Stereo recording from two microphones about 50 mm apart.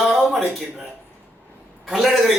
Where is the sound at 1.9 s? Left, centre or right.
Centre.